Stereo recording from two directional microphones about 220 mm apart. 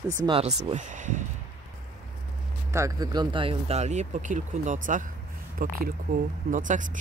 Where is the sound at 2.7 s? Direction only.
15° right (ahead or behind).